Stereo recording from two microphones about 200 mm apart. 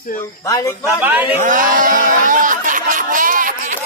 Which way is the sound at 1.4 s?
40° right (ahead or behind).